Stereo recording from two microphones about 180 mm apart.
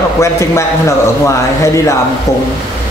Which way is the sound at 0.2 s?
15° left (ahead or behind).